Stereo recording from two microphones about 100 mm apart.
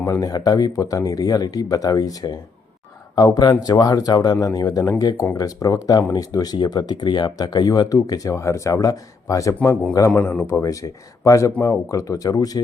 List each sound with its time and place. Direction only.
0.0 s speech: 40° left (ahead or behind)